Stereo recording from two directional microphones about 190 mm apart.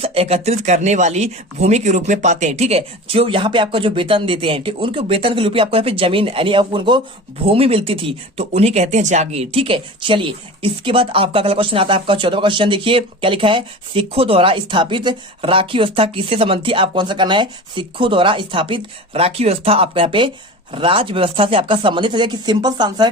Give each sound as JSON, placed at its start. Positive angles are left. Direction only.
{"t": 0.0, "sound": "speech", "side_deg": -30}